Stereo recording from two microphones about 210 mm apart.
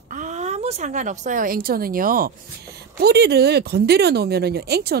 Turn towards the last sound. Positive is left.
turn(degrees=-50)  # may be behind; listen again after turning